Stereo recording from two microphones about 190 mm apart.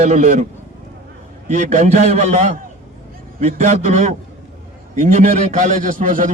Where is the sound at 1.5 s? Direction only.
40° right (ahead or behind).